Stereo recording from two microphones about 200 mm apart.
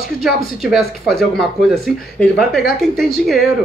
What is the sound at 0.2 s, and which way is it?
Speech, centre (ahead or behind).